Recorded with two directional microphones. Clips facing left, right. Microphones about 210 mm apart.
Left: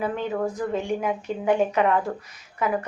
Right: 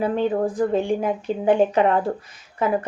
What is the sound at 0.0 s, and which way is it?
A woman's voice, 30° right (ahead or behind).